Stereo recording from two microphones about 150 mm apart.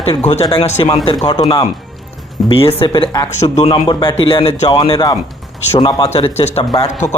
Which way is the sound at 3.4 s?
45° left (ahead or behind).